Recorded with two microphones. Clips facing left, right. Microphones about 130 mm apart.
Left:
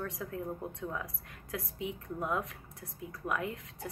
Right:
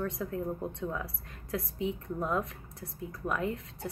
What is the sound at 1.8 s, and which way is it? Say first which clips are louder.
Speech: right 3 dB; 10° left (ahead or behind).